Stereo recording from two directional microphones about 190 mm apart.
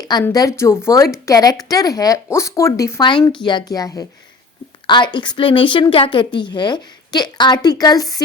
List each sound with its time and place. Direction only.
0.1 s a woman's voice: 20° left (ahead or behind)